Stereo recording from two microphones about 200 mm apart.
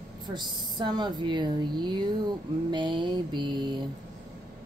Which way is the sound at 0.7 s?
20° right (ahead or behind).